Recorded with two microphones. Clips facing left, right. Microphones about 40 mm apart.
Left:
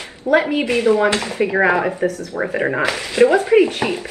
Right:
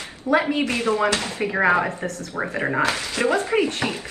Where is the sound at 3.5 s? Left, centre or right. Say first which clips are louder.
Left 8 dB; centre.